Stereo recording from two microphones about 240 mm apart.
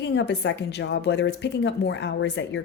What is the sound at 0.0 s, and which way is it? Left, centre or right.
A woman's voice, left.